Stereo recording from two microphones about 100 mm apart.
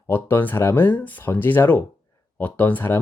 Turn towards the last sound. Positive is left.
turn(degrees=20)  # may be behind; listen again after turning